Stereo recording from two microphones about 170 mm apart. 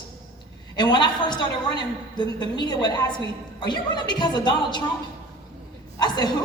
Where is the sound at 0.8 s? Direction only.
25° left (ahead or behind).